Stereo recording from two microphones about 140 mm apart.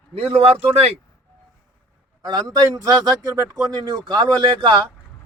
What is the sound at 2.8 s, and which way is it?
Speech, 25° right (ahead or behind).